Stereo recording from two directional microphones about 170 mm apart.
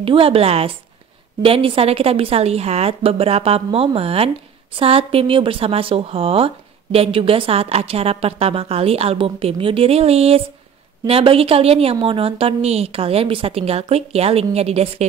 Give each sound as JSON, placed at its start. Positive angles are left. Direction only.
{"t": 0.0, "sound": "speech", "side_deg": -35}